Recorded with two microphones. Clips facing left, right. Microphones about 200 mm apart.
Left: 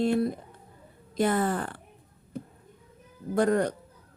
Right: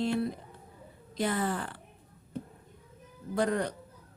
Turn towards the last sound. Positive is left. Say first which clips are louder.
# left 5 dB
turn(degrees=45)  # may be behind; listen again after turning